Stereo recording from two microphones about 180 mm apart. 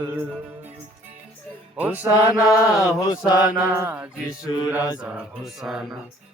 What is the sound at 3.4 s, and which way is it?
Mantra, 10° right (ahead or behind).